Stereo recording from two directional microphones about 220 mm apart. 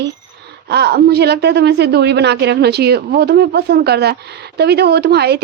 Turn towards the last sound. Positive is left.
turn(degrees=-50)  # may be behind; listen again after turning